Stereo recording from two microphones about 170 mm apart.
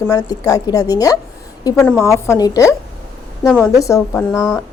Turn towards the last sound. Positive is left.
turn(degrees=5)  # may be behind; listen again after turning